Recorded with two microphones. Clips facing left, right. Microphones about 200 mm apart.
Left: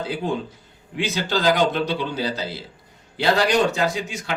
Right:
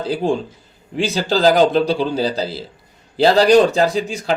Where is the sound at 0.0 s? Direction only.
35° right (ahead or behind).